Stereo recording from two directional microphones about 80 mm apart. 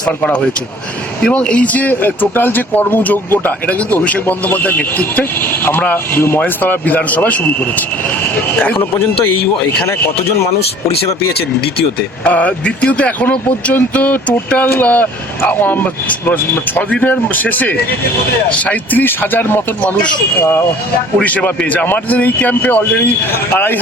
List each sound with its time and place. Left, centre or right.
0.0 s speech: centre
8.4 s speech: left
12.2 s speech: centre
21.2 s speech: centre